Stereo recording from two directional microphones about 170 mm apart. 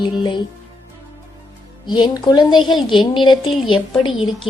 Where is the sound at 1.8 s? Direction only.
25° left (ahead or behind).